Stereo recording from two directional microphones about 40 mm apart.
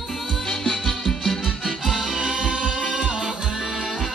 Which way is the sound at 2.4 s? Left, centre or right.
Centre.